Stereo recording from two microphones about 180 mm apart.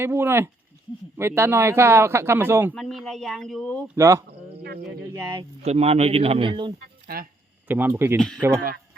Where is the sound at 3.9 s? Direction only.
15° right (ahead or behind).